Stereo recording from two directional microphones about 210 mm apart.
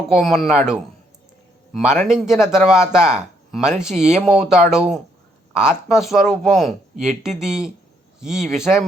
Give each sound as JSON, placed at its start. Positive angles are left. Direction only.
{"t": 0.1, "sound": "speech", "side_deg": 0}